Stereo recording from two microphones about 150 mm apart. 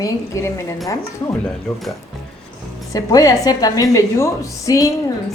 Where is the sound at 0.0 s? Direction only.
20° left (ahead or behind).